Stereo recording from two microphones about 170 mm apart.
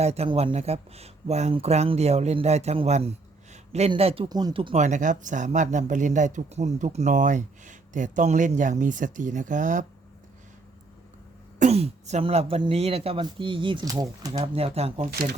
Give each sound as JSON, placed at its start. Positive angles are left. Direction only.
{"t": 0.0, "sound": "speech", "side_deg": -40}
{"t": 11.6, "sound": "speech", "side_deg": -40}
{"t": 14.3, "sound": "speech", "side_deg": -35}